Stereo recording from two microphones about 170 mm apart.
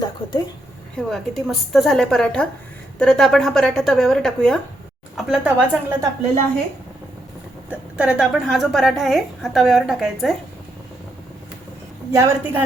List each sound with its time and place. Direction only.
0.0 s a sound: 25° left (ahead or behind)
0.9 s a woman's voice: centre (ahead or behind)
7.7 s a woman's voice: 5° right (ahead or behind)
12.1 s speech: 20° right (ahead or behind)